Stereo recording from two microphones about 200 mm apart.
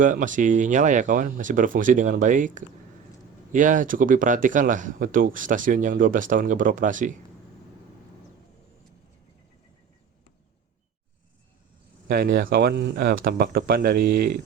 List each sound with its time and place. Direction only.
0.0 s speech: 40° right (ahead or behind)
12.0 s speech: 50° right (ahead or behind)